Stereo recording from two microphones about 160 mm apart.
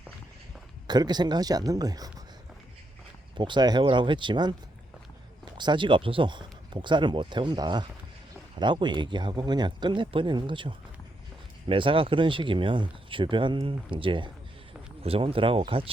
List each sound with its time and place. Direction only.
0.9 s speech: 25° right (ahead or behind)
3.3 s speech: 30° right (ahead or behind)
5.5 s speech: 30° right (ahead or behind)